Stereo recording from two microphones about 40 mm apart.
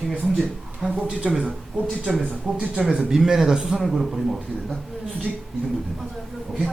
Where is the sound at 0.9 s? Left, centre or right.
Right.